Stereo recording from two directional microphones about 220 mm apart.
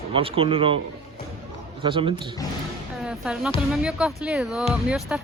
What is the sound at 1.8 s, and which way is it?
Speech, 25° right (ahead or behind).